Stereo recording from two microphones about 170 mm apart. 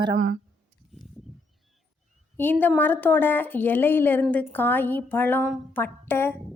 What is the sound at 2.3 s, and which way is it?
A woman's voice, 10° left (ahead or behind).